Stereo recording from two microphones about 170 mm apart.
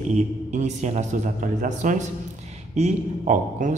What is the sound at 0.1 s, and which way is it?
A man's voice, 45° right (ahead or behind).